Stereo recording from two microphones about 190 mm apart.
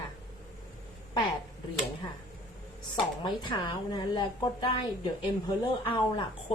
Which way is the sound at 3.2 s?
25° left (ahead or behind).